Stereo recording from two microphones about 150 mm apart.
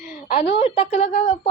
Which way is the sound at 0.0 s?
75° left (ahead or behind).